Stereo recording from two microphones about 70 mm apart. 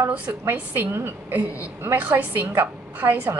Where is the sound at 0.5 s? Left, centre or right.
Right.